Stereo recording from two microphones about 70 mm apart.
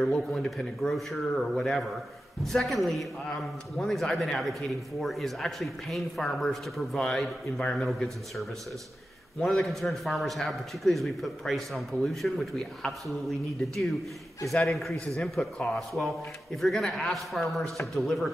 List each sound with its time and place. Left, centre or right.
0.0 s a man's voice: centre
15.4 s a man's voice: centre
15.7 s a man's voice: centre